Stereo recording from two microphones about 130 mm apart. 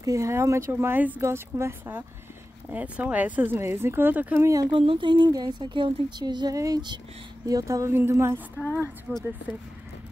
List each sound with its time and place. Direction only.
0.0 s speech: 25° right (ahead or behind)
4.6 s speech: 40° right (ahead or behind); by 8.4 s 20° right (ahead or behind)
9.1 s speech: 5° right (ahead or behind)